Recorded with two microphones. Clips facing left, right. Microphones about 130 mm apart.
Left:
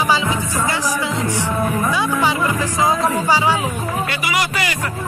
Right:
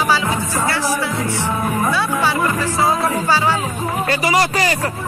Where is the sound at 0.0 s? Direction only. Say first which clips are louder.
Even; 15° left (ahead or behind).